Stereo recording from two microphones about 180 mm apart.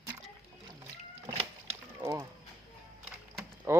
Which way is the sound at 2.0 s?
20° right (ahead or behind).